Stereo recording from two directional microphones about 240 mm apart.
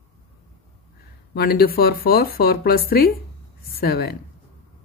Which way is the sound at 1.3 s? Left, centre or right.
Left.